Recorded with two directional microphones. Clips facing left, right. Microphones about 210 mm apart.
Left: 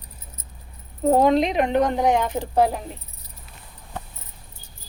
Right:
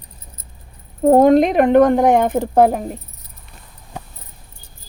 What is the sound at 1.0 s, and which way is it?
Speech, 50° right (ahead or behind).